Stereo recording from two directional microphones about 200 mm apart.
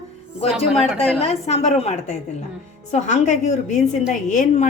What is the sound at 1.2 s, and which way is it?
A woman's voice, 30° left (ahead or behind).